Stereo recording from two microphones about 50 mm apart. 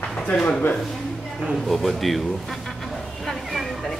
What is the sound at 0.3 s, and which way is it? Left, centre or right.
Speech, left.